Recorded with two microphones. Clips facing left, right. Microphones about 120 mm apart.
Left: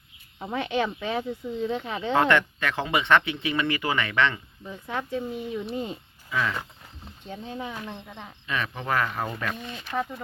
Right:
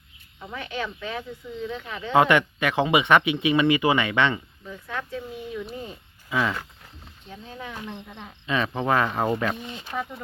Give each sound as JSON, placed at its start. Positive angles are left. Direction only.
{"t": 0.3, "sound": "speech", "side_deg": 30}
{"t": 2.1, "sound": "speech", "side_deg": -15}
{"t": 4.7, "sound": "speech", "side_deg": 20}
{"t": 7.5, "sound": "speech", "side_deg": 15}
{"t": 8.4, "sound": "speech", "side_deg": -30}
{"t": 9.6, "sound": "speech", "side_deg": -20}
{"t": 9.9, "sound": "speech", "side_deg": 0}